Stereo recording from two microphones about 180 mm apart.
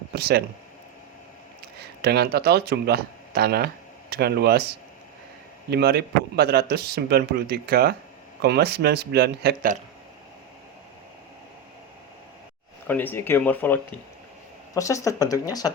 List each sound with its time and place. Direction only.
0.1 s speech: 60° right (ahead or behind)
2.0 s speech: 60° right (ahead or behind)
5.7 s speech: 65° right (ahead or behind)
12.9 s speech: 10° left (ahead or behind)